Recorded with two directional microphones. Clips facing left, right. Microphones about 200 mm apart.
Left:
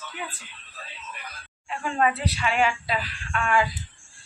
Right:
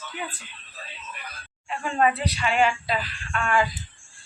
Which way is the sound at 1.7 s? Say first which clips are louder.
Right 1 dB; centre (ahead or behind).